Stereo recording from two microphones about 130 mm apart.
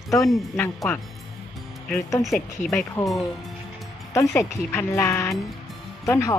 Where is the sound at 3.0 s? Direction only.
20° left (ahead or behind).